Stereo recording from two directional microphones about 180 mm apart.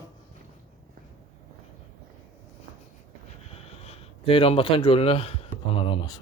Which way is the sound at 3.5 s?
35° left (ahead or behind).